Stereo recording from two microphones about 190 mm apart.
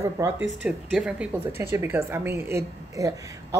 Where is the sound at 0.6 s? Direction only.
5° right (ahead or behind).